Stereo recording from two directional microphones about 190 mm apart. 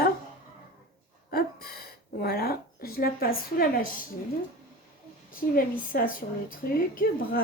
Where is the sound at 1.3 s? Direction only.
55° left (ahead or behind).